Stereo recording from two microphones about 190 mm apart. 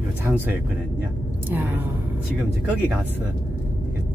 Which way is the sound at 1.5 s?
10° right (ahead or behind).